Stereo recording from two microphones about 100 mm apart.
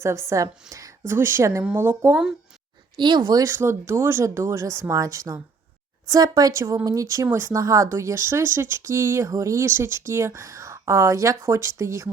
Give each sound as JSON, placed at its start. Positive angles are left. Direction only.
{"t": 0.0, "sound": "a woman's voice", "side_deg": -30}
{"t": 2.9, "sound": "speech", "side_deg": -45}
{"t": 3.5, "sound": "a woman's voice", "side_deg": -25}